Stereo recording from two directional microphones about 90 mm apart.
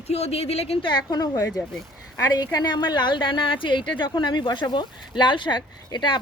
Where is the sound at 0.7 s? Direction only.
75° left (ahead or behind).